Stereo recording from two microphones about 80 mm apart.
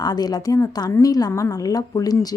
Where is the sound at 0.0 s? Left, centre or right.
Left.